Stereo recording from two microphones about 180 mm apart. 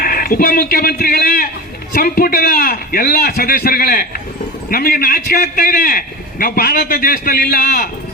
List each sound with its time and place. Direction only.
0.0 s a man's voice: 55° left (ahead or behind)